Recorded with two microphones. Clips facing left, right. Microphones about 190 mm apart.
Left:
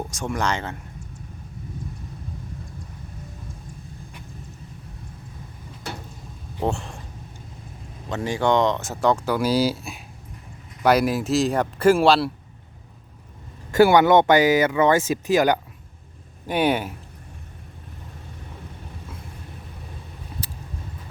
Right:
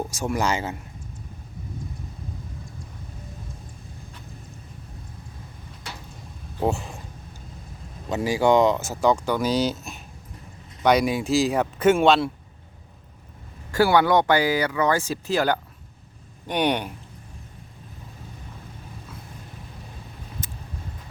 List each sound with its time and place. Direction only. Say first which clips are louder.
0.1 s speech: even; 5° right (ahead or behind)
6.6 s speech: right 1 dB; 5° right (ahead or behind)
8.1 s speech: right 2 dB; 10° right (ahead or behind)
13.7 s speech: left 4 dB; 20° left (ahead or behind)
16.5 s speech: left 2 dB; 5° left (ahead or behind)
20.4 s vehicle: left 1 dB; 35° left (ahead or behind)